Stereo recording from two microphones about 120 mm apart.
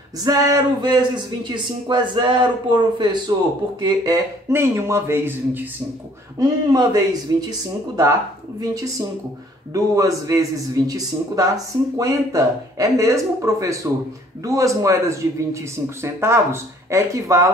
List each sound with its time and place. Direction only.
0.2 s a man's voice: 30° right (ahead or behind)
6.3 s a man's voice: 30° right (ahead or behind)
9.9 s speech: 30° right (ahead or behind)